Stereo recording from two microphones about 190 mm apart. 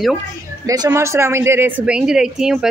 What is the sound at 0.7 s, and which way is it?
Speech, 15° right (ahead or behind).